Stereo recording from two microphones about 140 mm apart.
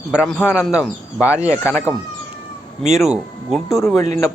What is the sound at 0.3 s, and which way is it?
Speech, 10° left (ahead or behind).